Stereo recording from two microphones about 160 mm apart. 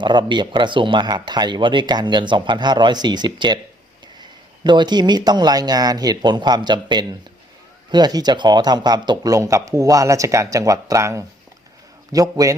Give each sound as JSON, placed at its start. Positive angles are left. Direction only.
{"t": 0.0, "sound": "speech", "side_deg": -30}